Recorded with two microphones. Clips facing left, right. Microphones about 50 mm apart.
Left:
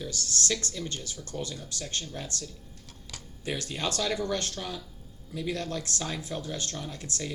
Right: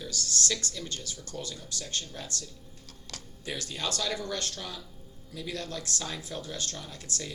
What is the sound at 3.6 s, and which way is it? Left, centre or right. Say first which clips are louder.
A man's voice: left 2 dB; left.